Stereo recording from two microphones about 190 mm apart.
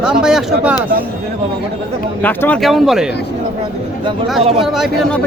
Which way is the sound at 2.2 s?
10° left (ahead or behind).